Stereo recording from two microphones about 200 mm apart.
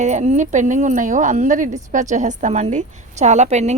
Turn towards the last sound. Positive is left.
turn(degrees=-35)  # may be behind; listen again after turning